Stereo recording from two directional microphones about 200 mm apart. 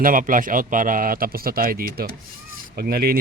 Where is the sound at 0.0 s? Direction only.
45° right (ahead or behind).